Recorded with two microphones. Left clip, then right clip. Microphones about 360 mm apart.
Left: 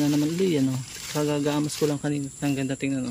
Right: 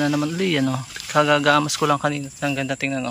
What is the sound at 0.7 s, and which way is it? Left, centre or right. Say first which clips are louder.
Speech: right 10 dB; right.